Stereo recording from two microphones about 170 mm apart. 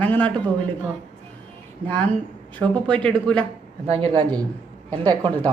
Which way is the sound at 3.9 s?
30° right (ahead or behind).